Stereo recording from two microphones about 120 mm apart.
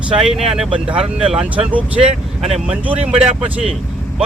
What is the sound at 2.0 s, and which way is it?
Speech, 50° right (ahead or behind).